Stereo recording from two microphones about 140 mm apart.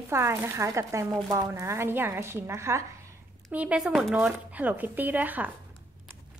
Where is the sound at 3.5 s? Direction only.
10° right (ahead or behind).